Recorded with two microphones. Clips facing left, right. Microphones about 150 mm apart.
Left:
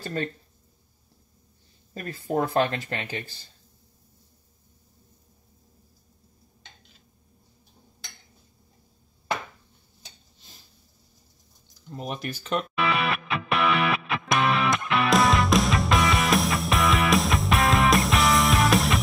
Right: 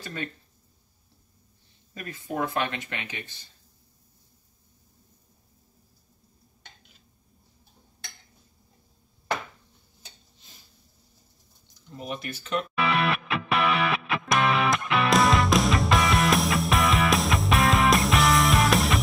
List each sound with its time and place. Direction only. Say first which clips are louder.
0.0 s speech: left 5 dB; 40° left (ahead or behind)
2.0 s speech: left 4 dB; 35° left (ahead or behind)
12.0 s speech: left 2 dB; 45° left (ahead or behind)
12.7 s music: right 3 dB; centre (ahead or behind)